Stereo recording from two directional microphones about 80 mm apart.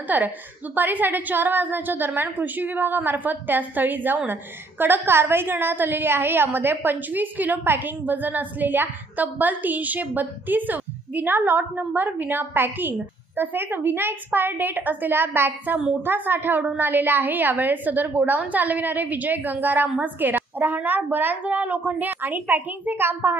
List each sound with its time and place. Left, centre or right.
0.1 s a woman's voice: right